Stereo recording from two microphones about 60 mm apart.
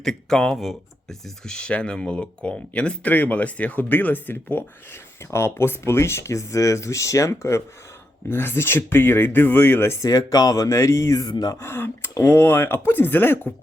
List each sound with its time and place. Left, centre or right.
0.0 s speech: centre; by 4.6 s left
5.3 s speech: left
8.3 s speech: left
10.0 s speech: left
11.6 s speech: left